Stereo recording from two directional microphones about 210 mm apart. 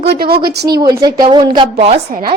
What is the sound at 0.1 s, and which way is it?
Speech, 50° right (ahead or behind).